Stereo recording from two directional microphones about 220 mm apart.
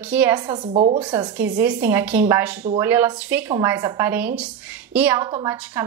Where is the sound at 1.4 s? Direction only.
10° right (ahead or behind).